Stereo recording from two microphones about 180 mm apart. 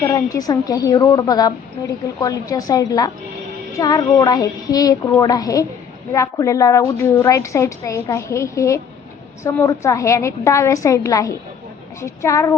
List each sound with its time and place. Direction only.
0.1 s a woman's voice: 20° left (ahead or behind)